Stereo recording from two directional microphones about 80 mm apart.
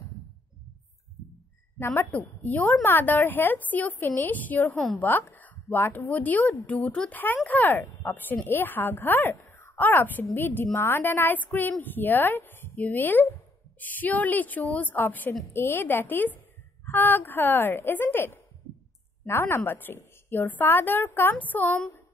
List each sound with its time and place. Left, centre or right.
1.8 s a woman's voice: left